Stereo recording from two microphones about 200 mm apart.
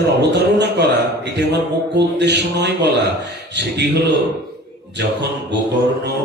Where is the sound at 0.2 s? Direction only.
60° right (ahead or behind).